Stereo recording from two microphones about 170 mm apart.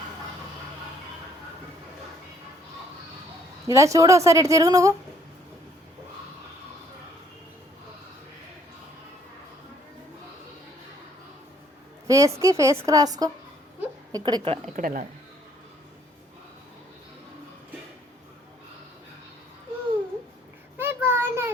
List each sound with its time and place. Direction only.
3.7 s a woman's voice: 20° right (ahead or behind)
12.0 s a woman's voice: 20° right (ahead or behind)
14.8 s speech: 55° right (ahead or behind)
20.7 s a sound: 15° right (ahead or behind)